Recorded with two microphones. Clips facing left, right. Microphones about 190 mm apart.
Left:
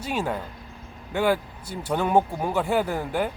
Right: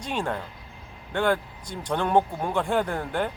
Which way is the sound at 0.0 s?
5° left (ahead or behind).